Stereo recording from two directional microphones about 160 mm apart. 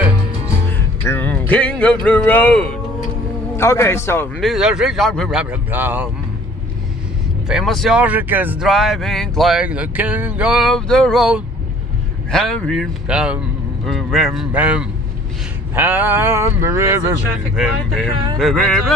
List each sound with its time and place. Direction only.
0.7 s speech: 15° left (ahead or behind)
3.5 s a man's voice: 15° left (ahead or behind)
4.4 s speech: centre (ahead or behind)
5.4 s speech: 10° right (ahead or behind)
7.4 s speech: centre (ahead or behind)
8.6 s speech: centre (ahead or behind); by 17.1 s 15° right (ahead or behind)
17.6 s speech: centre (ahead or behind)